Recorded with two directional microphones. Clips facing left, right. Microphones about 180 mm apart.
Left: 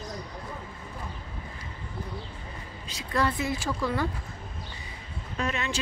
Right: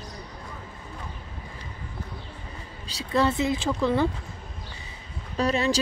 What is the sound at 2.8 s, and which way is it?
A woman's voice, 30° right (ahead or behind).